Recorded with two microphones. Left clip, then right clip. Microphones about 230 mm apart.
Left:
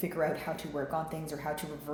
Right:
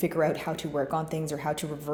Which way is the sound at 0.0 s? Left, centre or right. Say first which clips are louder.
Right 5 dB; right.